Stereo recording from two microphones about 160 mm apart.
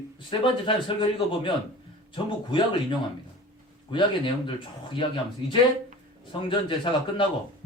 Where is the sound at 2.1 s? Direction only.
30° left (ahead or behind).